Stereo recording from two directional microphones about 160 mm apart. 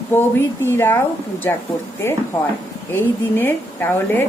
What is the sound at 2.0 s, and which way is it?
Speech, 15° left (ahead or behind).